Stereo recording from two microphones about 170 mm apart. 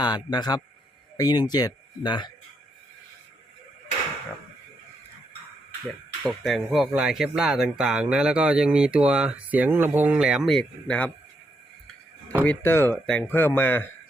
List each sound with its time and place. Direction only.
0.0 s speech: 25° left (ahead or behind)
6.2 s speech: centre (ahead or behind)
12.5 s speech: 15° left (ahead or behind)